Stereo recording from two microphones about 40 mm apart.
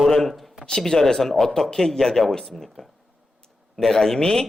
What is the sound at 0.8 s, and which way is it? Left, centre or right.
A man's voice, centre.